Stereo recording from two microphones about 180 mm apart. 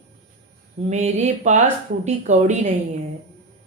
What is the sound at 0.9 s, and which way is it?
Speech, 40° right (ahead or behind).